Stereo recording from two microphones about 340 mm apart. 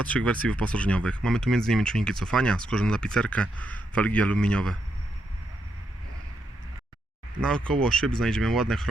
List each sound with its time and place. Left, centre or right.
0.0 s speech: centre
7.4 s speech: centre